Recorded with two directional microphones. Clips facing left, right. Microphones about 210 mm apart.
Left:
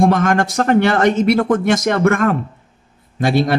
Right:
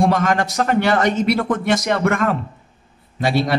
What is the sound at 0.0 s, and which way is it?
Speech, 50° left (ahead or behind).